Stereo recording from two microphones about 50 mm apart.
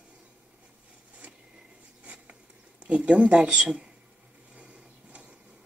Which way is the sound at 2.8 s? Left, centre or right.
Right.